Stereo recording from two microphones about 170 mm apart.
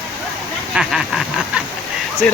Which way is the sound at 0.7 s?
Centre (ahead or behind).